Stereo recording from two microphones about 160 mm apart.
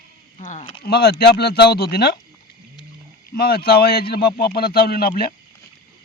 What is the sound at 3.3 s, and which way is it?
Speech, 75° left (ahead or behind).